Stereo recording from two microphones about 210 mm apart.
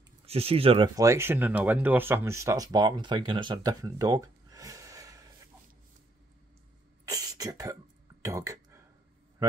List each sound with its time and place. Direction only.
0.3 s speech: 30° right (ahead or behind)
7.1 s a sound: 15° right (ahead or behind)
8.2 s speech: 15° right (ahead or behind)